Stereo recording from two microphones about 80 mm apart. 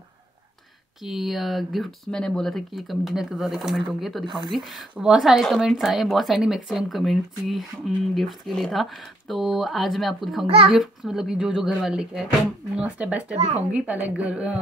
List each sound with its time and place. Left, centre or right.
1.0 s a woman's voice: centre